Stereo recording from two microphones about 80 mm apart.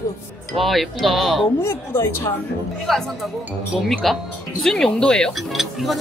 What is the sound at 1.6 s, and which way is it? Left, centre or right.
Speech, left.